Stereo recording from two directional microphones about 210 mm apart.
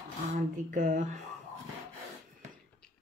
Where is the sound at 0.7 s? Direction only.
35° right (ahead or behind).